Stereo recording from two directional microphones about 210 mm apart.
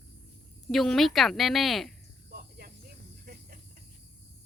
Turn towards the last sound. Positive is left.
turn(degrees=-45)  # may be behind; listen again after turning